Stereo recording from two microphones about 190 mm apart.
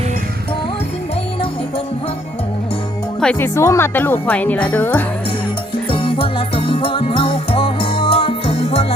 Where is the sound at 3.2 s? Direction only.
10° left (ahead or behind).